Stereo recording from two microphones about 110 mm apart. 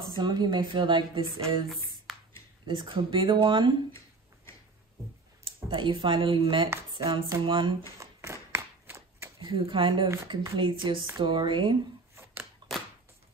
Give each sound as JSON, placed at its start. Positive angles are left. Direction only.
{"t": 0.0, "sound": "a woman's voice", "side_deg": -40}
{"t": 2.1, "sound": "a sound", "side_deg": 0}
{"t": 2.6, "sound": "a woman's voice", "side_deg": -50}
{"t": 5.4, "sound": "a woman's voice", "side_deg": -50}
{"t": 8.0, "sound": "a sound", "side_deg": -25}
{"t": 9.4, "sound": "a woman's voice", "side_deg": -50}
{"t": 10.0, "sound": "speech", "side_deg": -30}
{"t": 10.8, "sound": "a woman's voice", "side_deg": -45}
{"t": 12.6, "sound": "a sound", "side_deg": -45}